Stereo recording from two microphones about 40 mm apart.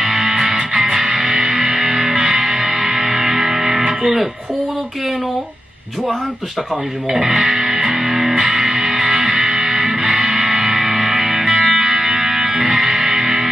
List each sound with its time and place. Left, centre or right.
0.0 s music: centre
0.6 s music: right
7.1 s speech: centre
8.0 s music: centre